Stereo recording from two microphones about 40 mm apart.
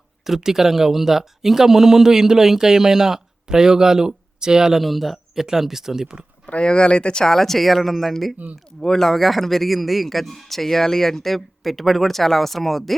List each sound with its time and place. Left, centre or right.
0.3 s speech: centre
4.8 s speech: centre
6.6 s speech: left
7.3 s speech: centre
8.4 s speech: right
8.8 s speech: centre